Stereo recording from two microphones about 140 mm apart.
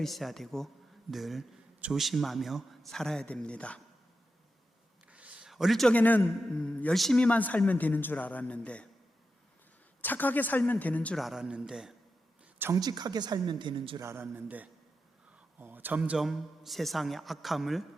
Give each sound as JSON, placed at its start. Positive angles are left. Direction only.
{"t": 0.0, "sound": "a man's voice", "side_deg": 0}
{"t": 5.1, "sound": "a man's voice", "side_deg": -10}
{"t": 10.0, "sound": "a man's voice", "side_deg": 10}
{"t": 11.2, "sound": "a man's voice", "side_deg": -5}
{"t": 12.5, "sound": "a sound", "side_deg": -15}
{"t": 12.8, "sound": "speech", "side_deg": -30}
{"t": 14.0, "sound": "a man's voice", "side_deg": -15}